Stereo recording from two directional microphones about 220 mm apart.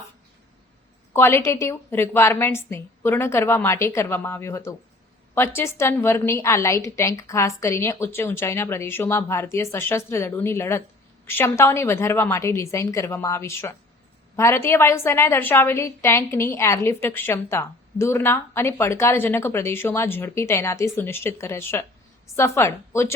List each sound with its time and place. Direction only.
1.1 s a woman's voice: 10° left (ahead or behind)